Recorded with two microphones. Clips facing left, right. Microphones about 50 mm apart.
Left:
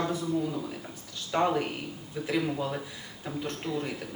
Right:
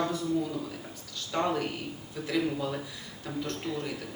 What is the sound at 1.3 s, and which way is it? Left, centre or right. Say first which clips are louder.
Speech: left 3 dB; centre.